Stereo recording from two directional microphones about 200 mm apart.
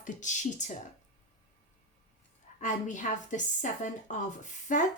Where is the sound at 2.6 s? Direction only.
40° left (ahead or behind).